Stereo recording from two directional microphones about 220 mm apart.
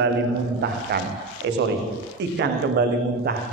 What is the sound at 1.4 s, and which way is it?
A man's voice, 55° right (ahead or behind).